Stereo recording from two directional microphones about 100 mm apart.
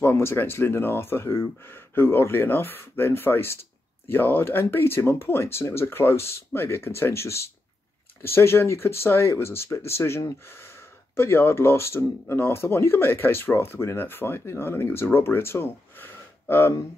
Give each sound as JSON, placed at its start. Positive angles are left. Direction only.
{"t": 0.0, "sound": "speech", "side_deg": 25}